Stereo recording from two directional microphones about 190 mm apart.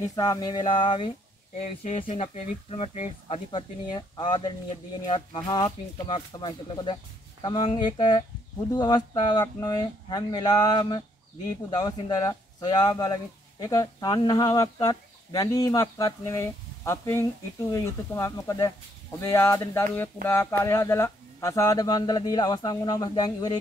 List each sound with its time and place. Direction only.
0.0 s speech: 20° left (ahead or behind)
1.6 s speech: 35° left (ahead or behind); by 23.6 s 20° left (ahead or behind)